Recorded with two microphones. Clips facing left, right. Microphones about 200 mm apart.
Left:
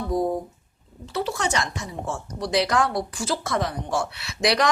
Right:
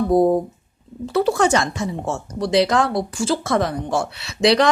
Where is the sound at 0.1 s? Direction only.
65° right (ahead or behind).